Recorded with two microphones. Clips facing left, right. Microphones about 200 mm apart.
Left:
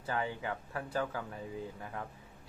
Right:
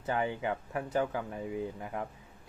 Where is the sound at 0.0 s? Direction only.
20° right (ahead or behind).